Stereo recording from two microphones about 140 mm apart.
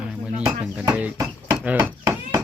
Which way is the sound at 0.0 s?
5° right (ahead or behind).